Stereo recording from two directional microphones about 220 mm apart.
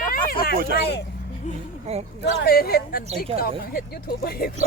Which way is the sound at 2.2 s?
45° left (ahead or behind).